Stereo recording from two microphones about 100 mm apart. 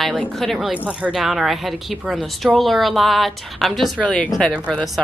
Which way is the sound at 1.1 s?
5° right (ahead or behind).